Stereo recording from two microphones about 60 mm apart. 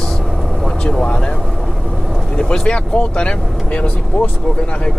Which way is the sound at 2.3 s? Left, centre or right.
Centre.